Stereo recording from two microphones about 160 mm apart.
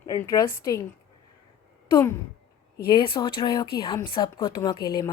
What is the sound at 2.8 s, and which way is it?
Speech, 30° left (ahead or behind).